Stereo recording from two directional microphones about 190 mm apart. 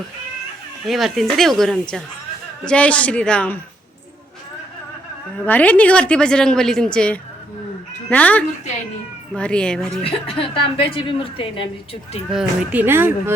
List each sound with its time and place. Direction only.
0.9 s a woman's voice: centre (ahead or behind)
5.5 s a woman's voice: 10° left (ahead or behind)
10.0 s a woman's voice: 30° left (ahead or behind)
12.3 s speech: 5° right (ahead or behind)